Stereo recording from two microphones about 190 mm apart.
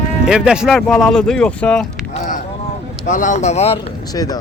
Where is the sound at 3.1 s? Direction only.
40° left (ahead or behind).